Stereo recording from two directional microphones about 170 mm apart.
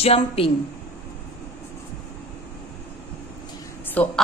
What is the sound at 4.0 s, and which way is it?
Speech, 10° left (ahead or behind).